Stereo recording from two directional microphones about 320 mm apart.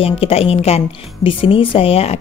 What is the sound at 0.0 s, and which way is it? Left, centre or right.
Speech, centre.